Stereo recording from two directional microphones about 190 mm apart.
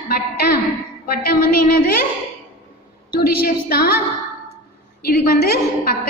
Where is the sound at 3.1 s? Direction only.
55° left (ahead or behind).